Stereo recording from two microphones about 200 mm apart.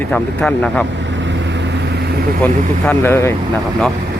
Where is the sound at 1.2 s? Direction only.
60° right (ahead or behind).